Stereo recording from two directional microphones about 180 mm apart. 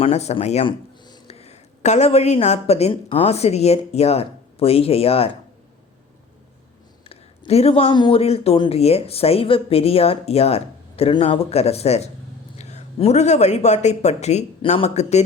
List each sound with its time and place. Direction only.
0.0 s a woman's voice: 35° left (ahead or behind)
7.1 s a sound: 35° left (ahead or behind)
7.9 s speech: 25° left (ahead or behind)